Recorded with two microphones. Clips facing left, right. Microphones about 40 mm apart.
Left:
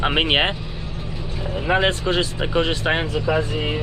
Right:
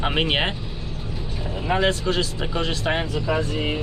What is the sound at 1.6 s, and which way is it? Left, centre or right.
Speech, left.